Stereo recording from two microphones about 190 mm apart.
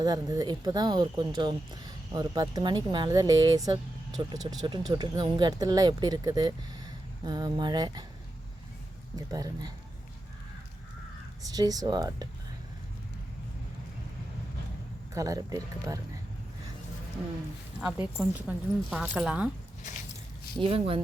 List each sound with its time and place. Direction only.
0.0 s speech: 20° right (ahead or behind)
9.1 s speech: 20° right (ahead or behind)
11.5 s speech: 20° right (ahead or behind)
15.1 s speech: 20° right (ahead or behind)
17.7 s speech: 5° right (ahead or behind)
20.6 s speech: 30° right (ahead or behind)